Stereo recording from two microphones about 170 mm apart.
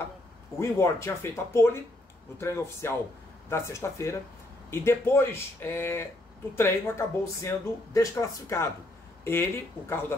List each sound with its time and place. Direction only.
0.6 s speech: 15° left (ahead or behind)